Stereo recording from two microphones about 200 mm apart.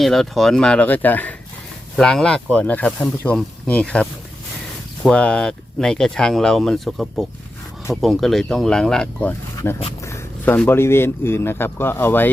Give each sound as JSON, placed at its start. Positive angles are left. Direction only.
{"t": 0.0, "sound": "speech", "side_deg": 0}